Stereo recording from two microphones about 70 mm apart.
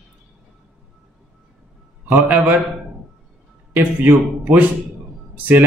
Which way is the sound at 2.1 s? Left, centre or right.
Right.